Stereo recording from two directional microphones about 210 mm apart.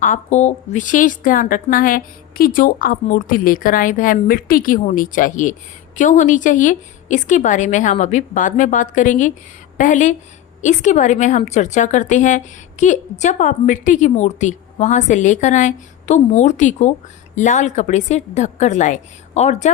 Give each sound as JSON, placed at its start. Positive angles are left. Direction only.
{"t": 0.0, "sound": "a woman's voice", "side_deg": 35}